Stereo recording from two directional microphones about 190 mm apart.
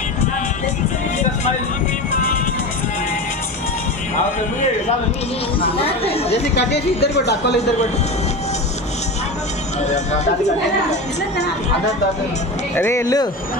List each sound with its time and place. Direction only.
5.6 s speech: 30° left (ahead or behind)
6.5 s speech: 60° left (ahead or behind)
9.8 s speech: 35° left (ahead or behind)
12.7 s speech: 15° left (ahead or behind)